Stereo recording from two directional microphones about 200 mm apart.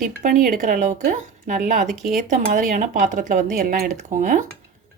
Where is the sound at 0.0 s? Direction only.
40° right (ahead or behind).